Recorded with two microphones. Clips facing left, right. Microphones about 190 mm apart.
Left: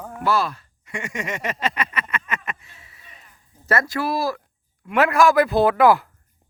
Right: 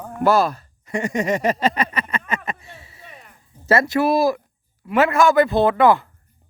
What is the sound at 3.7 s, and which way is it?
Speech, 25° right (ahead or behind).